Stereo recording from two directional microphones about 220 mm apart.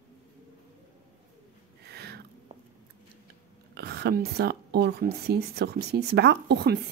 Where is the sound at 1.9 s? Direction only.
45° right (ahead or behind).